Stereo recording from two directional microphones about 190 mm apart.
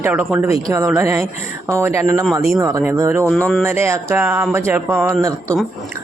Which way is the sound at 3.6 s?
15° right (ahead or behind).